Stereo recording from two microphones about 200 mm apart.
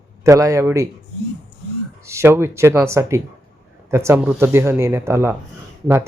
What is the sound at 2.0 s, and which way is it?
Speech, 15° right (ahead or behind).